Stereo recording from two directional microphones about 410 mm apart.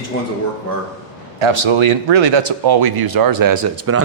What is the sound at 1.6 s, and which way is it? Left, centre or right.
A man's voice, right.